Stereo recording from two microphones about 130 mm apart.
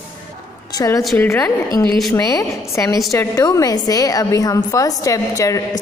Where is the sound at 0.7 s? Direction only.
25° left (ahead or behind).